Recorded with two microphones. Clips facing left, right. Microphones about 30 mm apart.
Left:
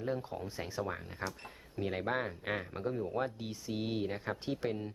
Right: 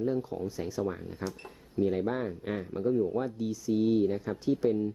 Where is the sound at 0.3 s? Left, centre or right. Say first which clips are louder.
Right 5 dB; left.